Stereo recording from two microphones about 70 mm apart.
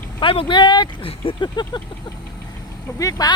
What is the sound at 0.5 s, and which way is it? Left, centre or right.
Speech, left.